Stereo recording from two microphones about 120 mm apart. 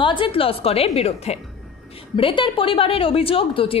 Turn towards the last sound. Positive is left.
turn(degrees=50)  # may be behind; listen again after turning